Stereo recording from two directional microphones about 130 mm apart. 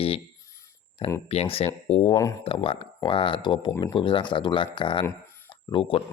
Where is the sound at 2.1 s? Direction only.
25° left (ahead or behind).